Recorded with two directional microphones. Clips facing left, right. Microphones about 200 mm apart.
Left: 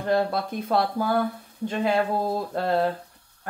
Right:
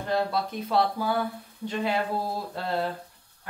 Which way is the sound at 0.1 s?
50° left (ahead or behind).